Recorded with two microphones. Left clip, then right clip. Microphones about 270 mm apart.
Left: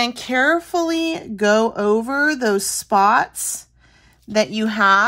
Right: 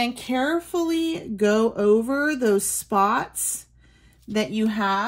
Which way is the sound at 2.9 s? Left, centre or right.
Left.